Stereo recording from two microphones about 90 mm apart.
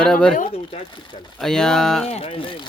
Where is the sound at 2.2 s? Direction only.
90° left; by 2.7 s 75° left (ahead or behind).